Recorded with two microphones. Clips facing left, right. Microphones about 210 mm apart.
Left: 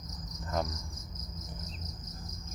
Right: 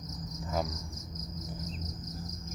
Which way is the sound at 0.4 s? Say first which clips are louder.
Even; 5° right (ahead or behind).